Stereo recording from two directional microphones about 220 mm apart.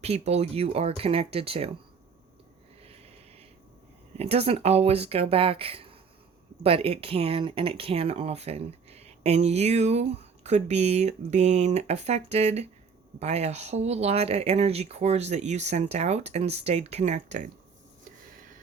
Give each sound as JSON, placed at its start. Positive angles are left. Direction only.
{"t": 0.0, "sound": "speech", "side_deg": -30}
{"t": 4.2, "sound": "speech", "side_deg": -30}